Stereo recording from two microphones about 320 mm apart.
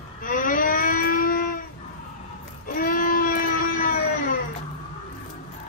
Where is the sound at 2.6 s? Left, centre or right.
Left.